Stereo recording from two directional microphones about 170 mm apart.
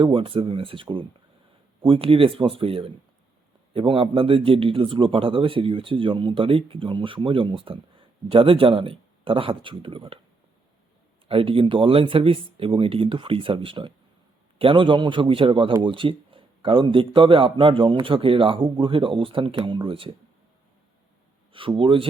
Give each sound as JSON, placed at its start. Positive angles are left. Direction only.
{"t": 0.0, "sound": "a man's voice", "side_deg": -30}
{"t": 11.3, "sound": "a man's voice", "side_deg": -30}
{"t": 21.5, "sound": "a man's voice", "side_deg": -30}